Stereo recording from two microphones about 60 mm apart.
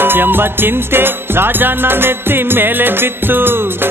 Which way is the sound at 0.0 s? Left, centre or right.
Right.